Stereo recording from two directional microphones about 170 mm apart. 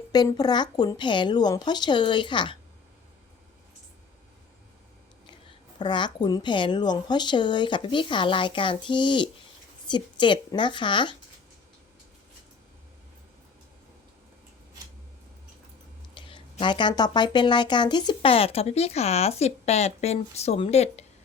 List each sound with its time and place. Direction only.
0.1 s speech: 25° left (ahead or behind)
5.8 s speech: 25° left (ahead or behind)
16.1 s speech: 30° left (ahead or behind)